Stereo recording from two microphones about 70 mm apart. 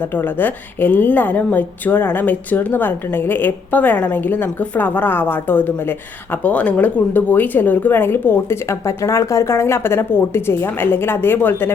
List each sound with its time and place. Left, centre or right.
0.2 s a woman's voice: left
8.9 s a woman's voice: left